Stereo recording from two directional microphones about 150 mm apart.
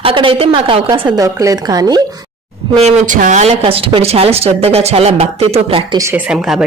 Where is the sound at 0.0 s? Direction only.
35° right (ahead or behind).